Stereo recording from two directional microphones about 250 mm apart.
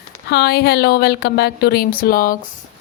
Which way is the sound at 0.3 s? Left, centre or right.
Left.